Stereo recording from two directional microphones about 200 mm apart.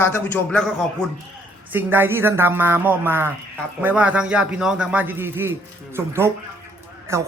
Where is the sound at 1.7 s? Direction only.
10° right (ahead or behind).